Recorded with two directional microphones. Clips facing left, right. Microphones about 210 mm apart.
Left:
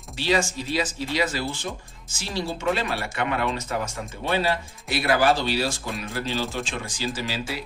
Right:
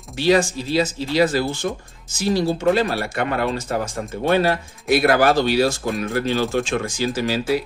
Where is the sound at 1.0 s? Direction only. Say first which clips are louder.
Right 9 dB; 35° right (ahead or behind).